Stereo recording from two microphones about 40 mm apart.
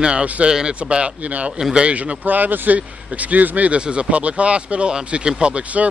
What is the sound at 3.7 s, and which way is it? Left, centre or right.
Speech, right.